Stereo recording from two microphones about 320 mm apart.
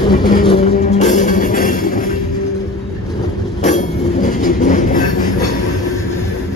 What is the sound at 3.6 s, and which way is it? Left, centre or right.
Train, left.